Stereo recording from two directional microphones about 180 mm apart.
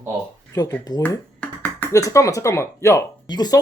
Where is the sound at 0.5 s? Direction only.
20° left (ahead or behind).